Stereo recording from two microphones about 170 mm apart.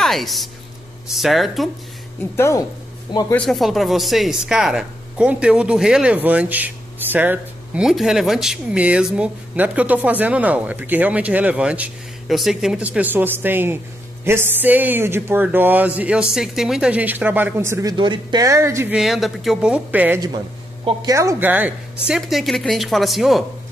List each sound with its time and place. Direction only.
0.0 s a woman's voice: centre (ahead or behind)
2.3 s speech: 15° left (ahead or behind)
3.3 s speech: centre (ahead or behind); by 17.9 s 15° right (ahead or behind)
17.9 s speech: 25° right (ahead or behind)
18.9 s a woman's voice: centre (ahead or behind)
20.8 s a woman's voice: 20° right (ahead or behind); by 23.4 s centre (ahead or behind)